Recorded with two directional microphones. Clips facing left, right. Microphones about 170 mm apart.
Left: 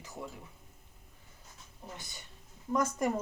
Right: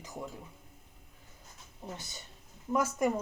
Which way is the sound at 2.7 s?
5° right (ahead or behind).